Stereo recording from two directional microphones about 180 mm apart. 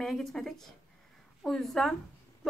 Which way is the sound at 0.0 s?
Centre (ahead or behind).